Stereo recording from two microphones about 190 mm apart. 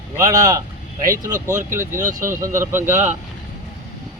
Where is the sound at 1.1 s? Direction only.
40° right (ahead or behind).